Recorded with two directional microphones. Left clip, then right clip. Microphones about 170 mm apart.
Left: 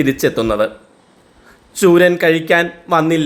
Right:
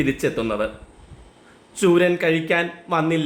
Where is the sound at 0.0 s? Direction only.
35° left (ahead or behind).